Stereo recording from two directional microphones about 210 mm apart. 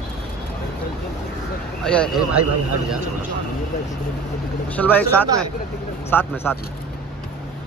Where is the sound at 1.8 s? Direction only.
5° left (ahead or behind).